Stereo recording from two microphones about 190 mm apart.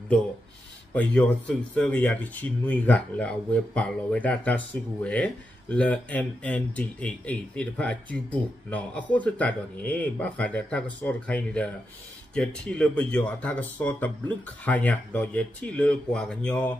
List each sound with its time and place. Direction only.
0.9 s speech: 5° left (ahead or behind)